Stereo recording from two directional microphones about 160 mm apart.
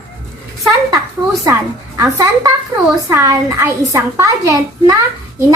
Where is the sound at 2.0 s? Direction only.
20° right (ahead or behind).